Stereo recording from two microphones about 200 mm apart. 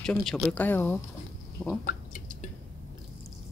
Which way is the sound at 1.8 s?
40° left (ahead or behind).